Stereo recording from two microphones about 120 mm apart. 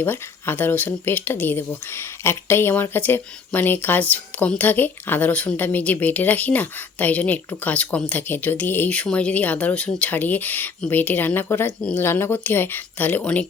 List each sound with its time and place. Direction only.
0.0 s speech: 15° left (ahead or behind)